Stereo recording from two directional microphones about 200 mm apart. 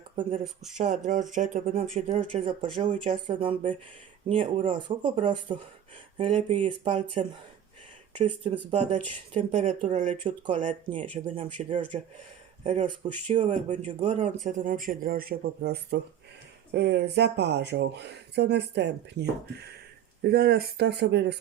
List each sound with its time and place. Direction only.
0.4 s speech: centre (ahead or behind)
0.8 s speech: 40° right (ahead or behind)
2.0 s speech: 25° right (ahead or behind)
8.7 s speech: 30° right (ahead or behind)
10.9 s speech: 25° right (ahead or behind); by 21.3 s 55° right (ahead or behind)